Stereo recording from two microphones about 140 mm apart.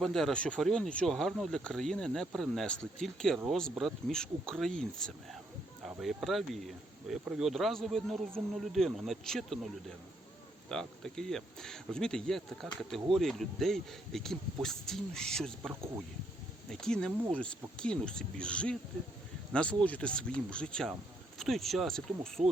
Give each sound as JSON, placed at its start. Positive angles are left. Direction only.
{"t": 0.0, "sound": "speech", "side_deg": 0}
{"t": 10.7, "sound": "speech", "side_deg": 5}